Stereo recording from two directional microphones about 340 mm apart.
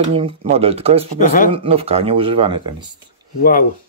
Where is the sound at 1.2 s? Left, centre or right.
Left.